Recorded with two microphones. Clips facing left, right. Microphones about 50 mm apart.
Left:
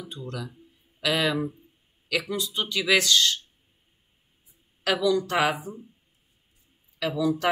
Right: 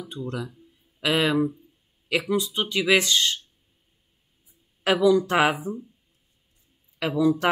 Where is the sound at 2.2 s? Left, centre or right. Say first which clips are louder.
Right 4 dB; centre.